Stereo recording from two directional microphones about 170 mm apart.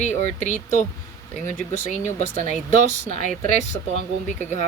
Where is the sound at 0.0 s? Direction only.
45° left (ahead or behind).